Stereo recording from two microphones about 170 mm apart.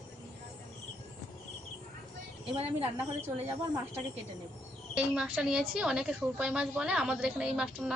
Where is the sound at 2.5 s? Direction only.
35° right (ahead or behind).